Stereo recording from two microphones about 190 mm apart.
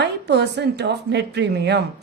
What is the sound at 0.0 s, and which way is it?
A woman's voice, 65° right (ahead or behind).